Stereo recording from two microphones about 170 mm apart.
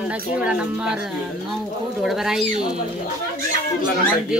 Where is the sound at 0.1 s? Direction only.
5° right (ahead or behind).